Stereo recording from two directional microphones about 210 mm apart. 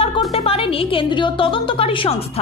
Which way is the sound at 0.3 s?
25° left (ahead or behind).